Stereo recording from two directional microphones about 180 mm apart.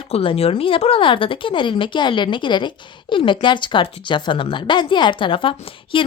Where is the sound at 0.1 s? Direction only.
35° left (ahead or behind).